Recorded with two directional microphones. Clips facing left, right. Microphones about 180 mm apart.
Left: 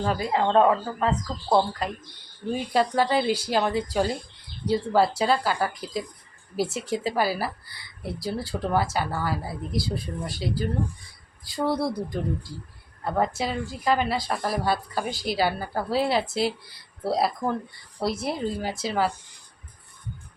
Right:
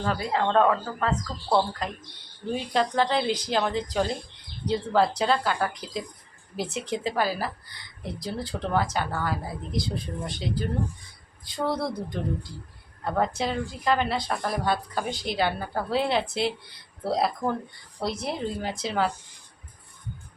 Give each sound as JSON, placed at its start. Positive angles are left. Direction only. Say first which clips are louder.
{"t": 0.0, "sound": "a woman's voice", "louder": "left 2 dB", "side_deg": 15}
{"t": 2.7, "sound": "a woman's voice", "louder": "left 2 dB", "side_deg": 10}